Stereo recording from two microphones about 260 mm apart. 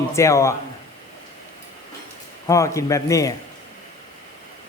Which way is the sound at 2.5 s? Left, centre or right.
Centre.